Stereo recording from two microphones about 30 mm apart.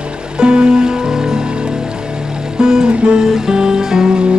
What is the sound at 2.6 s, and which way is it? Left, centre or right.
Music, right.